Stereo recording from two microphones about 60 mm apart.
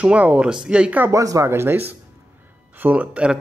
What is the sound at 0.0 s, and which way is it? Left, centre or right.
Speech, right.